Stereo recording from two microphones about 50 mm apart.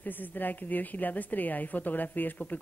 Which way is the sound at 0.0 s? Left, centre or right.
Left.